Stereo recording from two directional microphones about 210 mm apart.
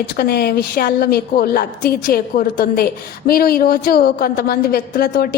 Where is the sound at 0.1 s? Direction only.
50° left (ahead or behind).